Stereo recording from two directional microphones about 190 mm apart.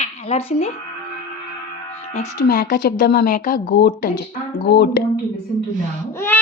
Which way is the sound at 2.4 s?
50° left (ahead or behind).